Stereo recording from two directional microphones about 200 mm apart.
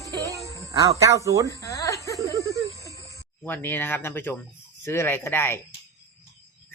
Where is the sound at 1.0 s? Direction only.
15° right (ahead or behind).